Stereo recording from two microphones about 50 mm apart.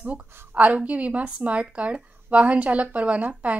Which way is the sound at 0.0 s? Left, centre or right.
Right.